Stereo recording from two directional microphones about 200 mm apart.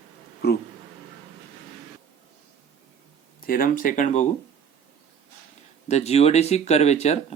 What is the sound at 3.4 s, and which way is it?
Speech, 45° left (ahead or behind).